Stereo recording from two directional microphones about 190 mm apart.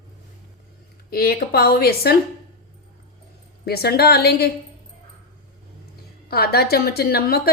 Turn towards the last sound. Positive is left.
turn(degrees=55)  # may be behind; listen again after turning